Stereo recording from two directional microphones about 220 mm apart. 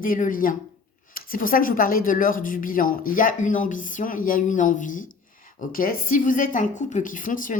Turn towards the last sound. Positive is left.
turn(degrees=35)  # may be behind; listen again after turning